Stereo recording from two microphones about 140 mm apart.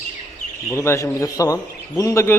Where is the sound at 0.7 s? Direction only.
20° left (ahead or behind).